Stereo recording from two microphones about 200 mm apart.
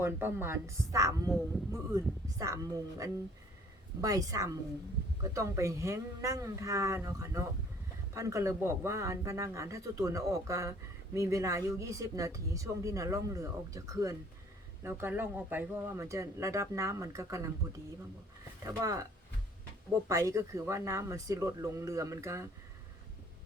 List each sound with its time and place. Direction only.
0.0 s speech: 10° right (ahead or behind)
18.6 s speech: 15° right (ahead or behind)
20.1 s speech: 15° right (ahead or behind)